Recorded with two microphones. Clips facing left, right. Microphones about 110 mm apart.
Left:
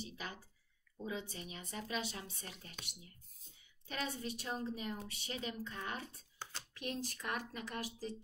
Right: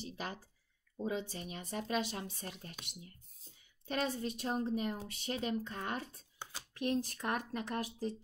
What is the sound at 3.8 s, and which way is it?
Speech, 40° right (ahead or behind).